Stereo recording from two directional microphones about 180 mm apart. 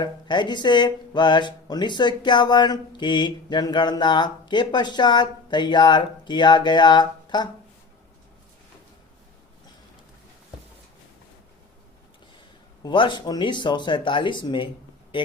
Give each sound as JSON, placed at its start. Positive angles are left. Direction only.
{"t": 0.0, "sound": "speech", "side_deg": 25}
{"t": 12.8, "sound": "speech", "side_deg": 25}